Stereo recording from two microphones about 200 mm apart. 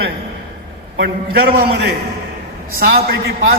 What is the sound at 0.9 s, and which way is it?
Speech, 55° right (ahead or behind).